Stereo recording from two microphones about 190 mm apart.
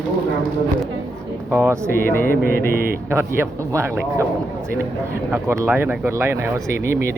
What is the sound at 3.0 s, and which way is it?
Speech, 15° right (ahead or behind).